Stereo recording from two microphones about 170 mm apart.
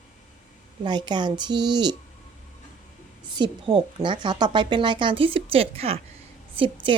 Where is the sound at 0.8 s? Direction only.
25° right (ahead or behind).